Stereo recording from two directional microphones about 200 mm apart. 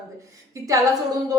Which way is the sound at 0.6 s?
15° right (ahead or behind).